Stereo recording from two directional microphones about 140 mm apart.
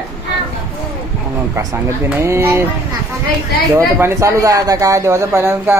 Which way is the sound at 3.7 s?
20° right (ahead or behind).